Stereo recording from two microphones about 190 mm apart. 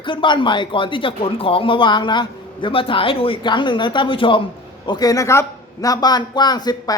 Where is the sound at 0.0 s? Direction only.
25° left (ahead or behind).